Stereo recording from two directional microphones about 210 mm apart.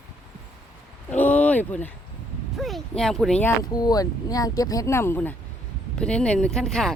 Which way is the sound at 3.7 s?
20° left (ahead or behind).